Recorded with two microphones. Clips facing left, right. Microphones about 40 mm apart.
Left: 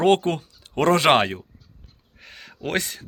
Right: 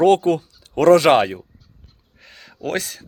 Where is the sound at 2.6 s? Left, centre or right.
Left.